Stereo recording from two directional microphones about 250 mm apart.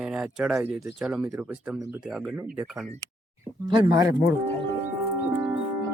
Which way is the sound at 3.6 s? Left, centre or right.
Centre.